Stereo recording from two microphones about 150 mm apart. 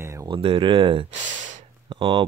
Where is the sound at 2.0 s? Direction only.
35° right (ahead or behind).